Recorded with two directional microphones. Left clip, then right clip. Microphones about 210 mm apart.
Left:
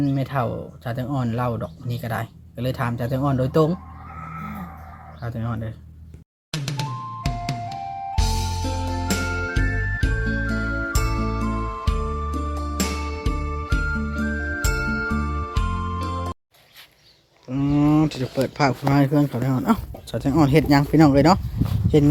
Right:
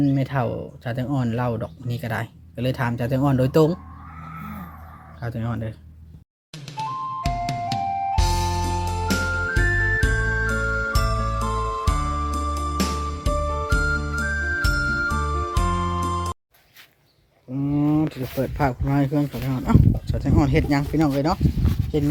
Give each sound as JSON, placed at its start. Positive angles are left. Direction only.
{"t": 0.0, "sound": "speech", "side_deg": -15}
{"t": 5.2, "sound": "speech", "side_deg": -20}
{"t": 6.5, "sound": "music", "side_deg": 0}
{"t": 14.2, "sound": "jingle", "side_deg": 0}
{"t": 17.5, "sound": "speech", "side_deg": 0}